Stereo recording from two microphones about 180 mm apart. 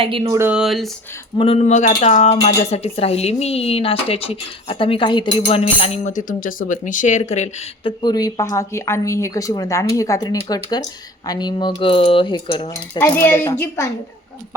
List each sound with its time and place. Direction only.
0.0 s speech: 30° right (ahead or behind)
0.3 s speech: 10° right (ahead or behind)
1.4 s speech: 35° left (ahead or behind)
8.0 s speech: 20° left (ahead or behind)
13.0 s a woman's voice: 15° left (ahead or behind)